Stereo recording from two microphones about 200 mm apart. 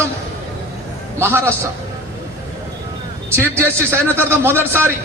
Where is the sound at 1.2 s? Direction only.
10° right (ahead or behind).